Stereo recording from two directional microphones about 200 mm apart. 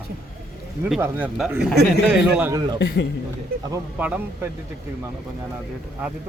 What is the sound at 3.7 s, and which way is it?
Speech, 5° right (ahead or behind).